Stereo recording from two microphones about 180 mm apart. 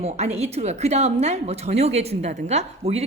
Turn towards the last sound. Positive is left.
turn(degrees=-35)  # may be behind; listen again after turning